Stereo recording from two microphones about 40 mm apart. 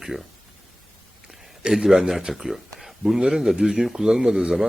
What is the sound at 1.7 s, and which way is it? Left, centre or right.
Speech, centre.